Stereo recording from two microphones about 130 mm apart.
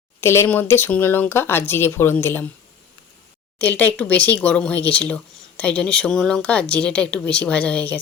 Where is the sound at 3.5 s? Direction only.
10° left (ahead or behind).